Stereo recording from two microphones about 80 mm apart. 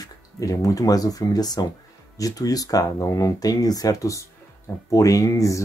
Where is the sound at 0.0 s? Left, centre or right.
Left.